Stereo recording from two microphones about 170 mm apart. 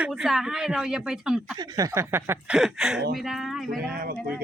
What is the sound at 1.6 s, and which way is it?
Speech, 20° right (ahead or behind).